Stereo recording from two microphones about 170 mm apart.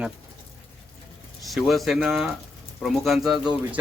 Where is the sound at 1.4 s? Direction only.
Centre (ahead or behind).